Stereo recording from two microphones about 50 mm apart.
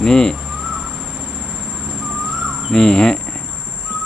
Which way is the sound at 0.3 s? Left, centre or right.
Centre.